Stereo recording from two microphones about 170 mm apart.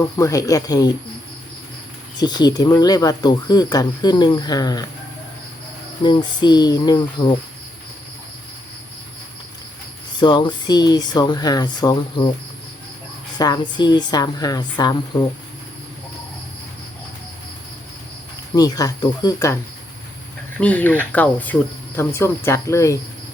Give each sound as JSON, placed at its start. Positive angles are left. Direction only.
{"t": 0.2, "sound": "speech", "side_deg": 20}
{"t": 2.1, "sound": "speech", "side_deg": 25}
{"t": 6.0, "sound": "speech", "side_deg": 25}
{"t": 10.2, "sound": "speech", "side_deg": 25}
{"t": 13.4, "sound": "speech", "side_deg": 25}
{"t": 18.5, "sound": "speech", "side_deg": 20}
{"t": 20.6, "sound": "speech", "side_deg": 10}